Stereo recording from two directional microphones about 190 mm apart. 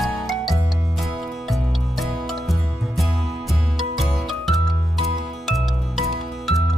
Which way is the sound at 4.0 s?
Centre (ahead or behind).